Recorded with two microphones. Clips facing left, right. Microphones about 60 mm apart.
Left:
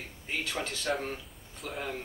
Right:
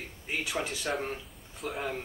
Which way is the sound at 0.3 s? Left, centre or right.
Centre.